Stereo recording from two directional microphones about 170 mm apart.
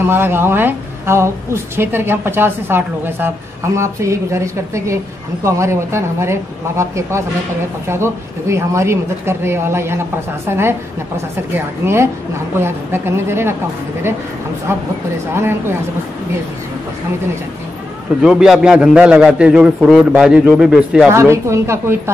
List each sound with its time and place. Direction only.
0.0 s a woman's voice: 15° right (ahead or behind)
14.7 s a woman's voice: 15° right (ahead or behind)
18.2 s a man's voice: 5° right (ahead or behind)
21.1 s a woman's voice: 15° right (ahead or behind)